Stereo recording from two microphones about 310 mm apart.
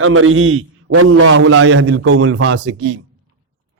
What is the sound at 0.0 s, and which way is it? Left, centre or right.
A man's voice, right.